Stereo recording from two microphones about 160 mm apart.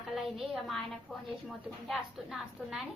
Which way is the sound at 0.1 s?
Centre (ahead or behind).